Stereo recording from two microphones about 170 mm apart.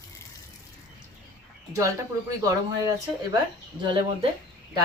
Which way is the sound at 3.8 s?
25° right (ahead or behind).